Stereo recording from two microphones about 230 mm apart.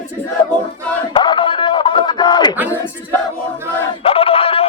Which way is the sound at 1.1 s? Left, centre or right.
Left.